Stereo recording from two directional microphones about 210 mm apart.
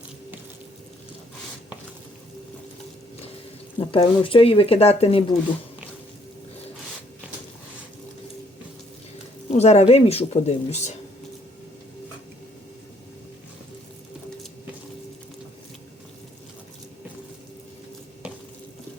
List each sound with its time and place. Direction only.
3.8 s speech: 25° left (ahead or behind)
9.5 s speech: 30° left (ahead or behind)